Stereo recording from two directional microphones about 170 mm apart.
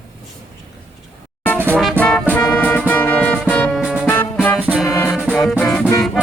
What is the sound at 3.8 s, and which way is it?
Music, 10° right (ahead or behind).